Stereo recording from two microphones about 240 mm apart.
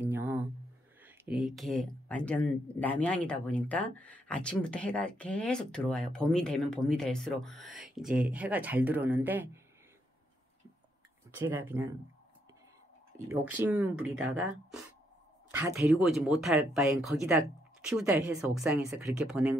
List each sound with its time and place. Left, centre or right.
0.0 s a sound: centre
1.0 s speech: centre
11.3 s speech: centre
13.3 s speech: centre